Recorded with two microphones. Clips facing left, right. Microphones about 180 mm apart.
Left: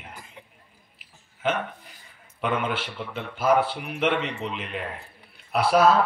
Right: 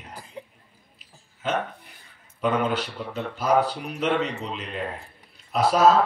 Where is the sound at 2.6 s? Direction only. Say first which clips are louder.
Right 3 dB; 40° right (ahead or behind).